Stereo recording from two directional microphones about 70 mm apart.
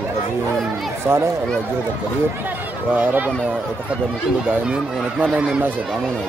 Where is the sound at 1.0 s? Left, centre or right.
Right.